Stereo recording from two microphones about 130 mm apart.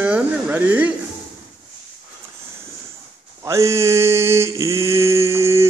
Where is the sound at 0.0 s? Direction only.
10° right (ahead or behind).